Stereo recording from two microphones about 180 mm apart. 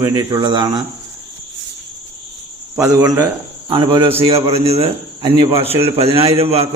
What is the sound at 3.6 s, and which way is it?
A man's voice, 25° right (ahead or behind).